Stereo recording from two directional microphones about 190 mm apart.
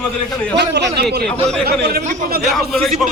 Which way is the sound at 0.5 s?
60° right (ahead or behind).